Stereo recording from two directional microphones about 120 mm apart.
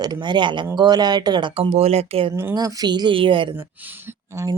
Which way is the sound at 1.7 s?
60° right (ahead or behind).